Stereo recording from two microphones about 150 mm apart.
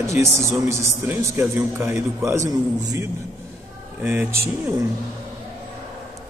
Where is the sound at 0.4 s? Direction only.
20° right (ahead or behind).